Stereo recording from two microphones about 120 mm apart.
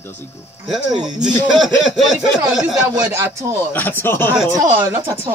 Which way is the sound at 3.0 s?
20° right (ahead or behind).